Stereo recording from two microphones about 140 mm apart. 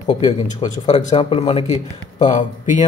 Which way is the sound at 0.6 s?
55° left (ahead or behind).